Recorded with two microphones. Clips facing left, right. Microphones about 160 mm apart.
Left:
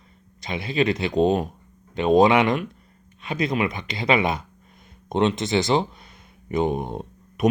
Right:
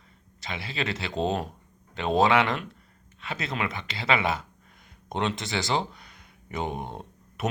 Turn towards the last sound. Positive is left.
turn(degrees=15)  # may be behind; listen again after turning